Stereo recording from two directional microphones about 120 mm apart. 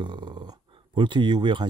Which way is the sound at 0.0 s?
40° right (ahead or behind).